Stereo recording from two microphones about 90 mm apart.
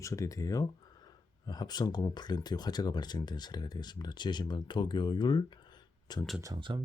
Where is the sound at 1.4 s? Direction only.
50° left (ahead or behind).